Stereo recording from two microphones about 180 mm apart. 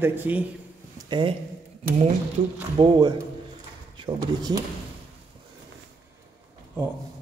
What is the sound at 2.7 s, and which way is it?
Speech, 25° right (ahead or behind).